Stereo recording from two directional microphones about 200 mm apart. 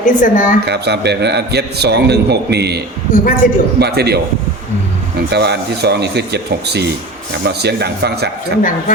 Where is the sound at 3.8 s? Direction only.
55° right (ahead or behind).